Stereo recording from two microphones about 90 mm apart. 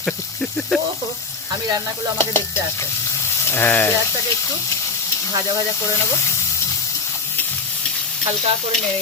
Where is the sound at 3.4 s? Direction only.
25° left (ahead or behind).